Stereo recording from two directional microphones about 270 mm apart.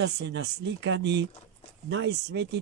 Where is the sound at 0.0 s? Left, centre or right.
Right.